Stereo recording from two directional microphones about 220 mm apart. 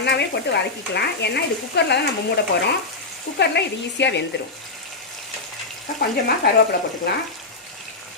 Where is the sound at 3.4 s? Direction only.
50° left (ahead or behind).